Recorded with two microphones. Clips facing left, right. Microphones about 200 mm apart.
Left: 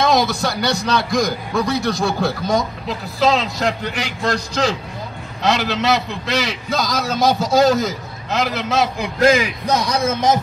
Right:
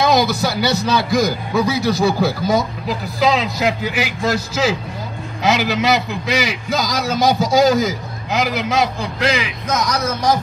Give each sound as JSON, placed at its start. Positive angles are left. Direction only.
{"t": 0.0, "sound": "a man's voice", "side_deg": 0}
{"t": 9.2, "sound": "a man's voice", "side_deg": 45}
{"t": 9.7, "sound": "a man's voice", "side_deg": 30}